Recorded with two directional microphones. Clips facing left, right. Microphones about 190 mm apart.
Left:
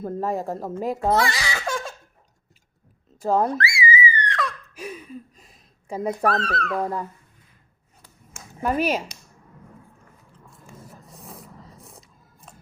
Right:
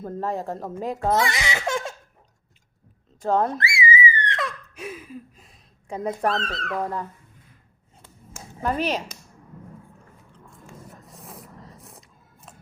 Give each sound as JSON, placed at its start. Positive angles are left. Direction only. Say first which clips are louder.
{"t": 0.0, "sound": "speech", "louder": "left 2 dB", "side_deg": 10}
{"t": 1.1, "sound": "speech", "louder": "left 1 dB", "side_deg": -20}
{"t": 3.2, "sound": "speech", "louder": "left 1 dB", "side_deg": 5}
{"t": 3.5, "sound": "a sound", "louder": "left 1 dB", "side_deg": -25}
{"t": 4.3, "sound": "laughter", "louder": "left 1 dB", "side_deg": -20}
{"t": 4.7, "sound": "gasp", "louder": "even", "side_deg": 0}
{"t": 6.4, "sound": "speech", "louder": "left 4 dB", "side_deg": -20}
{"t": 6.7, "sound": "speech", "louder": "right 1 dB", "side_deg": 10}
{"t": 8.6, "sound": "speech", "louder": "left 2 dB", "side_deg": 10}
{"t": 10.3, "sound": "a sound", "louder": "right 1 dB", "side_deg": 0}